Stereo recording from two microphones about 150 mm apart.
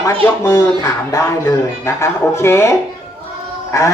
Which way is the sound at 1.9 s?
20° left (ahead or behind).